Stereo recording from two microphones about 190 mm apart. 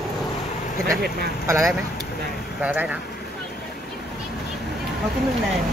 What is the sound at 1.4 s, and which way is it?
Speech, 15° right (ahead or behind).